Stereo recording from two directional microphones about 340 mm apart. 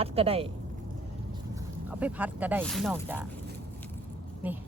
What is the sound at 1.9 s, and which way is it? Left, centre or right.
Speech, centre.